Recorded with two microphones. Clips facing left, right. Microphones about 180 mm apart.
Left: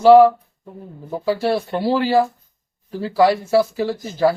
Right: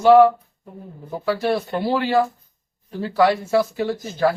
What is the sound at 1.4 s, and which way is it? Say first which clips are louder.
Speech: left 1 dB; 30° left (ahead or behind).